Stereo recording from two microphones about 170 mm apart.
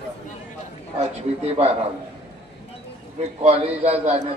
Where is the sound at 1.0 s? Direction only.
40° right (ahead or behind).